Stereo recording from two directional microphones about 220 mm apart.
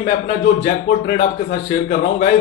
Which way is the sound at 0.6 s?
40° left (ahead or behind).